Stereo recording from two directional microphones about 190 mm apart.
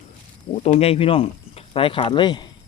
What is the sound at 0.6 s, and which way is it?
Speech, 35° left (ahead or behind).